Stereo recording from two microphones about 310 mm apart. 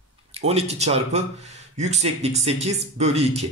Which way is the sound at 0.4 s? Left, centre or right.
Centre.